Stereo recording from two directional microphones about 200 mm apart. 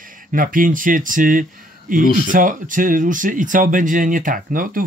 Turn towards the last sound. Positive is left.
turn(degrees=-45)  # may be behind; listen again after turning